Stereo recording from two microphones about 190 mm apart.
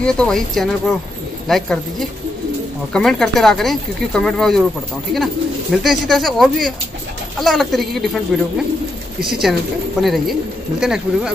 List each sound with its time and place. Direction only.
0.0 s speech: 5° left (ahead or behind)